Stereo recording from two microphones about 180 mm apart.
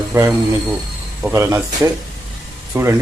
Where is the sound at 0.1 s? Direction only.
15° right (ahead or behind).